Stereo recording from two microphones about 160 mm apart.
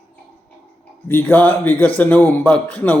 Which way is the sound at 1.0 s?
10° left (ahead or behind).